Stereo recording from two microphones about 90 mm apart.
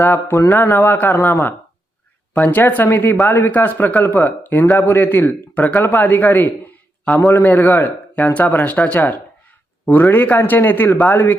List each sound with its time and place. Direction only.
0.0 s a man's voice: 25° left (ahead or behind)